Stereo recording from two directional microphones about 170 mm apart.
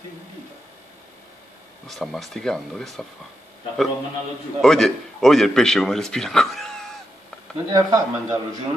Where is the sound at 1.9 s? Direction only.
Centre (ahead or behind).